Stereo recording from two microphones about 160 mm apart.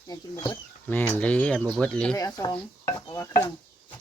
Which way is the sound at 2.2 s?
20° left (ahead or behind).